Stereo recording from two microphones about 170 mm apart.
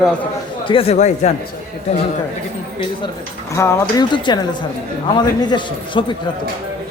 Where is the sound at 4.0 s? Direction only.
25° left (ahead or behind).